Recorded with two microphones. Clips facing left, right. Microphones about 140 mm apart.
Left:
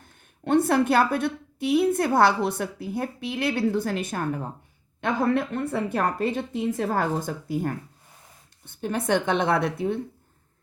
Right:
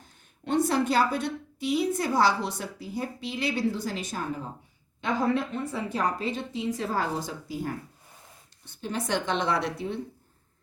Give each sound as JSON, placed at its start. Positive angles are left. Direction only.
{"t": 0.0, "sound": "a woman's voice", "side_deg": 55}